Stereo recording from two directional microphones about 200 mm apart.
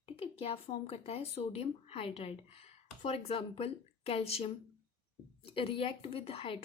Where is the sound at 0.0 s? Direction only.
30° left (ahead or behind).